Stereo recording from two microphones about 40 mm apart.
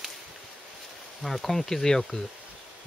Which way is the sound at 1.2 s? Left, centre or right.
Centre.